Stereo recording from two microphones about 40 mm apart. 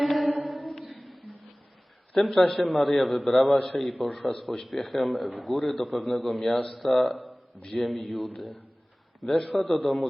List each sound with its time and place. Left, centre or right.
0.0 s music: centre
0.4 s a sound: centre
2.1 s a man's voice: centre
9.2 s a man's voice: centre